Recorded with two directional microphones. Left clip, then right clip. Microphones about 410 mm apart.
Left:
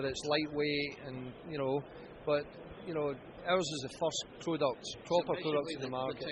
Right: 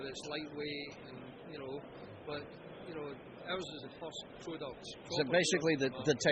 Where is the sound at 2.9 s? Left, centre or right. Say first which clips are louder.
Left 10 dB; left.